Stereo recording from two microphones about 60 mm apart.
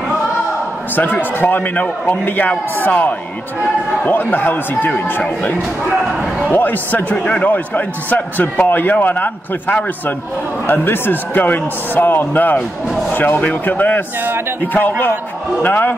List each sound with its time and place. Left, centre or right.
0.9 s a man's voice: left
6.5 s a man's voice: left